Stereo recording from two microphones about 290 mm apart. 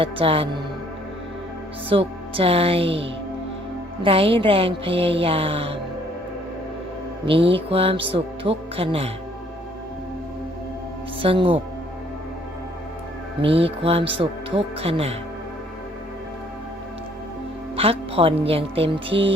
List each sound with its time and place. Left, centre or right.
0.0 s music: centre
1.9 s music: centre
7.3 s music: centre
11.2 s music: centre
13.4 s music: centre
17.7 s music: centre